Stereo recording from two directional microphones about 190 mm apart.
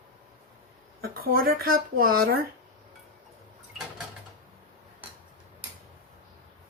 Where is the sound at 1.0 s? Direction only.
50° right (ahead or behind).